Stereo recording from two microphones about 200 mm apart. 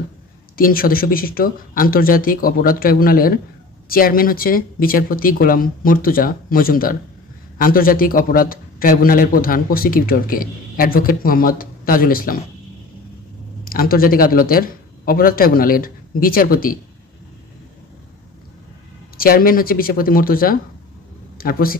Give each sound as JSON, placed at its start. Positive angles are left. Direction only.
{"t": 0.6, "sound": "a man's voice", "side_deg": 45}
{"t": 13.7, "sound": "a man's voice", "side_deg": 45}
{"t": 19.1, "sound": "a man's voice", "side_deg": 45}